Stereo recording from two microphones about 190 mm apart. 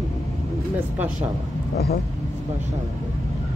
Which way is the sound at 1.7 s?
55° left (ahead or behind).